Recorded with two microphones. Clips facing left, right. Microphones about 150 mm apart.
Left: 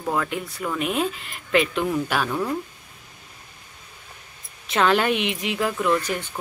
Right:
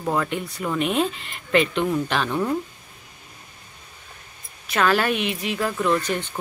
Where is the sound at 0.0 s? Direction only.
5° right (ahead or behind).